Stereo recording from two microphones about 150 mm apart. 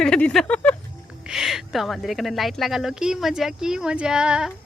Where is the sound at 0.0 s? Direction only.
5° left (ahead or behind).